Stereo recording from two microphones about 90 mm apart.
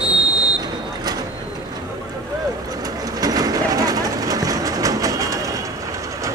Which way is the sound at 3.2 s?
45° right (ahead or behind).